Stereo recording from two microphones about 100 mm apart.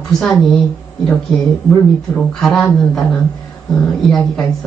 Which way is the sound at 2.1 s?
5° left (ahead or behind).